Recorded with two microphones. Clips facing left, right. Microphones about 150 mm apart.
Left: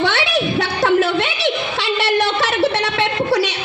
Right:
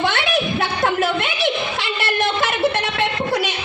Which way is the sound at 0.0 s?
80° left.